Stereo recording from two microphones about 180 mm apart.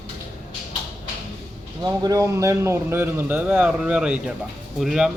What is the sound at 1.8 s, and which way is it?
A man's voice, 20° right (ahead or behind).